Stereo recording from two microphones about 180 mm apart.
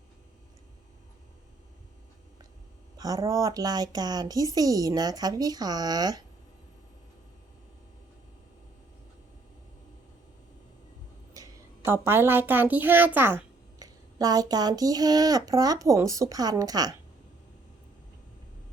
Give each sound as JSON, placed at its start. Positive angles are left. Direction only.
{"t": 3.0, "sound": "a woman's voice", "side_deg": -20}
{"t": 11.9, "sound": "a woman's voice", "side_deg": -15}